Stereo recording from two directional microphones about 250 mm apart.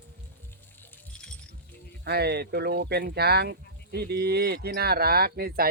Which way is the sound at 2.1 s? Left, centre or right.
Right.